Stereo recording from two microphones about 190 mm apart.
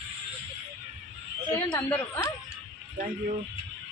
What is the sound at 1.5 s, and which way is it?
Speech, 20° left (ahead or behind).